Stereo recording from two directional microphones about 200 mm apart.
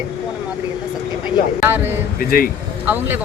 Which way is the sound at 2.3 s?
45° left (ahead or behind).